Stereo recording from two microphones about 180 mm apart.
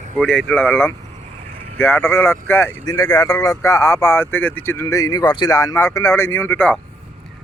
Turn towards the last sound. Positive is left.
turn(degrees=10)  # may be behind; listen again after turning